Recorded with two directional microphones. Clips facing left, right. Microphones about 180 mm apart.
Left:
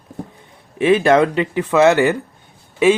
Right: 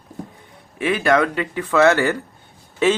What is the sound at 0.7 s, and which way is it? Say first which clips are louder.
Speech: left 5 dB; 25° left (ahead or behind).